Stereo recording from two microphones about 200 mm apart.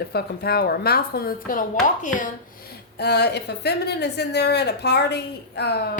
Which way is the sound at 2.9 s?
55° left (ahead or behind).